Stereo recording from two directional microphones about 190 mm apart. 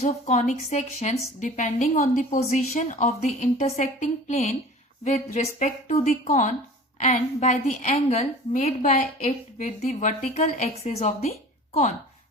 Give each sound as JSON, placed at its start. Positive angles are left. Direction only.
{"t": 0.0, "sound": "a woman's voice", "side_deg": 35}